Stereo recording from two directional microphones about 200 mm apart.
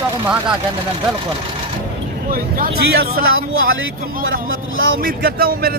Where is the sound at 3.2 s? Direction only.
90° right.